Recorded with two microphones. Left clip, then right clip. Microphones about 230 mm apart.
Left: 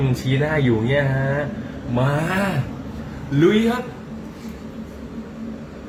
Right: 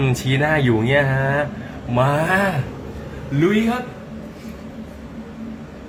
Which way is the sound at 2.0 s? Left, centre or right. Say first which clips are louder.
Right 5 dB; right.